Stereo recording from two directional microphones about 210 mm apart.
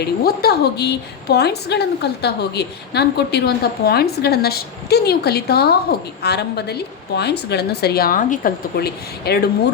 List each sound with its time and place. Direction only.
0.0 s a woman's voice: 50° left (ahead or behind)